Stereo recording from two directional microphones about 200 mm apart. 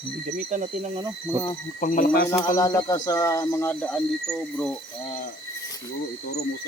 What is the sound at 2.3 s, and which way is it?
Speech, 15° left (ahead or behind).